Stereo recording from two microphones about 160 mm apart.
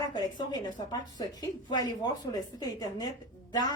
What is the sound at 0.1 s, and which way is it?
A woman's voice, 25° left (ahead or behind).